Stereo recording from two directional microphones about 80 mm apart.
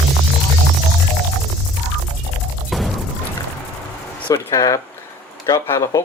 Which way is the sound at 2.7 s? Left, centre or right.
Centre.